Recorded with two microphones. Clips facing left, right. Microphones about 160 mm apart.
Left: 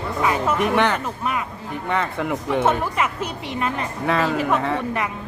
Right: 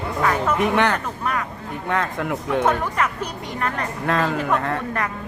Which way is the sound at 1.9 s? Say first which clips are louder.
Even; 5° left (ahead or behind).